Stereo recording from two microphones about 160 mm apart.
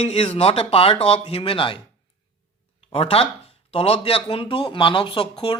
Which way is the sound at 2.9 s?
35° left (ahead or behind).